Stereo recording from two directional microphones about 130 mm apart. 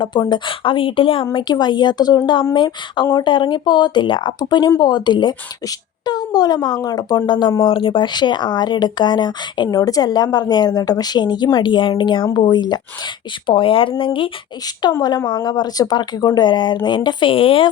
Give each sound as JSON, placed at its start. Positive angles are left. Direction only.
{"t": 0.0, "sound": "speech", "side_deg": 35}